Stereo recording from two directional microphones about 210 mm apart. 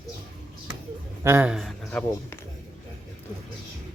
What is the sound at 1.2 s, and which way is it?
Speech, 10° right (ahead or behind).